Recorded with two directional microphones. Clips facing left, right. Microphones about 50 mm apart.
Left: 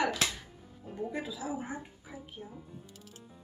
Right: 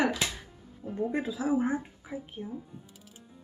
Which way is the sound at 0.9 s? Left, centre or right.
Right.